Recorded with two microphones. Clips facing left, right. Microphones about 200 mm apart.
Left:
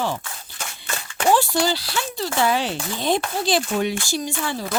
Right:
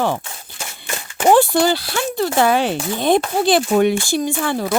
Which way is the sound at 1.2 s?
55° right (ahead or behind).